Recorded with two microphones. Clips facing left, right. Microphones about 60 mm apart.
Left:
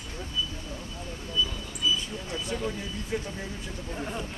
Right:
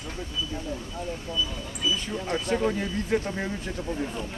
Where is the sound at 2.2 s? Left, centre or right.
Right.